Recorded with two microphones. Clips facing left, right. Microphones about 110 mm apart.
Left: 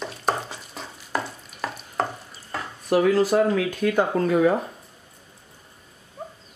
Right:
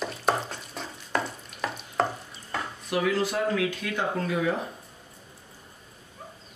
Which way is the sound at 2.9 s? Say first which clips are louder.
Left 8 dB; 40° left (ahead or behind).